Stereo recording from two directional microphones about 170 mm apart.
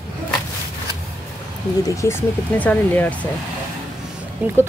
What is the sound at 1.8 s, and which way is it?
Speech, 15° left (ahead or behind).